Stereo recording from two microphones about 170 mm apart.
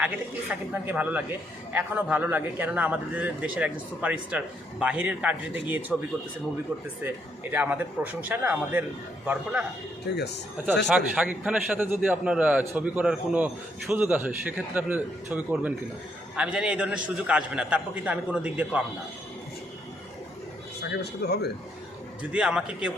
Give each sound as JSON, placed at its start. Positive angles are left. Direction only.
{"t": 0.0, "sound": "a man's voice", "side_deg": -10}
{"t": 7.5, "sound": "a man's voice", "side_deg": -10}
{"t": 10.2, "sound": "speech", "side_deg": 85}
{"t": 10.8, "sound": "a man's voice", "side_deg": -5}
{"t": 21.0, "sound": "speech", "side_deg": 75}
{"t": 22.2, "sound": "a man's voice", "side_deg": -5}